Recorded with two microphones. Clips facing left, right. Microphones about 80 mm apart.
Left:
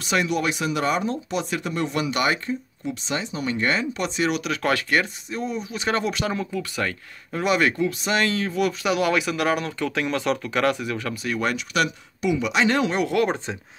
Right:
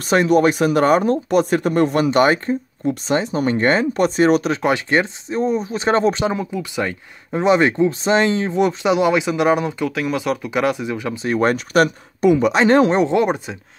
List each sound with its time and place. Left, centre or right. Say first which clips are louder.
0.0 s speech: right 9 dB; right
4.6 s speech: right 5 dB; right
6.3 s speech: right 4 dB; centre
9.8 s speech: even; centre
11.2 s speech: right 9 dB; right